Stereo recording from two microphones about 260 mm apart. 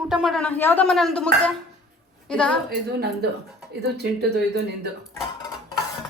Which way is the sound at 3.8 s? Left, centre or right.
Right.